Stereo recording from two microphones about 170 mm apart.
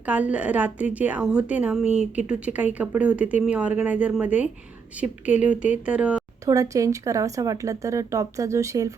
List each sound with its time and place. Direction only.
0.0 s a woman's voice: 10° right (ahead or behind)
6.4 s speech: 20° right (ahead or behind)